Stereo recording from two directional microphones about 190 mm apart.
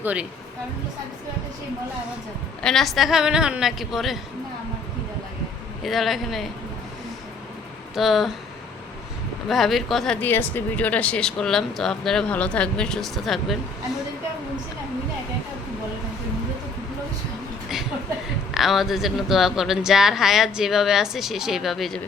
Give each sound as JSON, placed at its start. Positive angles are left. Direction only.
{"t": 0.0, "sound": "speech", "side_deg": -5}
{"t": 2.6, "sound": "speech", "side_deg": 0}
{"t": 5.8, "sound": "speech", "side_deg": 0}
{"t": 7.9, "sound": "speech", "side_deg": 0}
{"t": 9.5, "sound": "speech", "side_deg": 0}
{"t": 18.5, "sound": "speech", "side_deg": 0}